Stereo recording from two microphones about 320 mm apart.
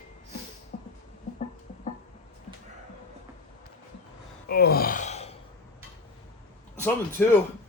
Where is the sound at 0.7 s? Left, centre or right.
Left.